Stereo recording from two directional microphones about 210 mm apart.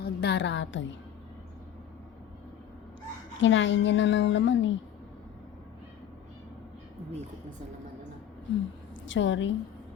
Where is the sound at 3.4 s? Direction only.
60° left (ahead or behind).